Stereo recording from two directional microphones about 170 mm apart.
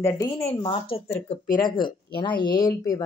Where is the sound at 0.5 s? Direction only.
35° left (ahead or behind).